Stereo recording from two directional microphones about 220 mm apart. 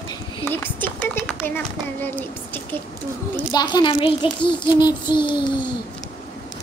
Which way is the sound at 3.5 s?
20° left (ahead or behind).